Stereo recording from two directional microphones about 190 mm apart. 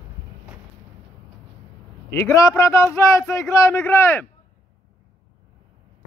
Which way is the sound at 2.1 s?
15° left (ahead or behind).